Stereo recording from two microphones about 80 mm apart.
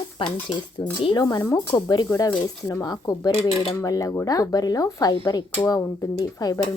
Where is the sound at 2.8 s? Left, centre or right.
Left.